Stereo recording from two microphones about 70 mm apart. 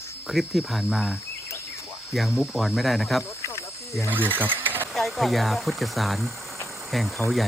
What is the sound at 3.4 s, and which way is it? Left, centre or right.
Cricket, left.